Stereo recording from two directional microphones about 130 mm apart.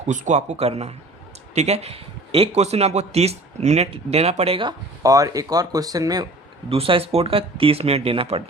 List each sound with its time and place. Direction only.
0.0 s a man's voice: 65° right (ahead or behind); by 4.7 s 45° right (ahead or behind)
5.0 s speech: 25° right (ahead or behind)
6.7 s speech: 45° right (ahead or behind)